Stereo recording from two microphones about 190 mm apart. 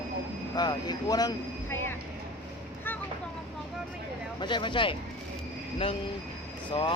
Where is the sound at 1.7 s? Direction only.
10° left (ahead or behind).